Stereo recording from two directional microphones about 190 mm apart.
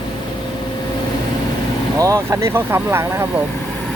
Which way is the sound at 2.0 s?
15° right (ahead or behind).